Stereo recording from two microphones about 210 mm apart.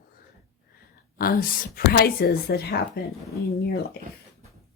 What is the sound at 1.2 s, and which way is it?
Speech, 45° left (ahead or behind).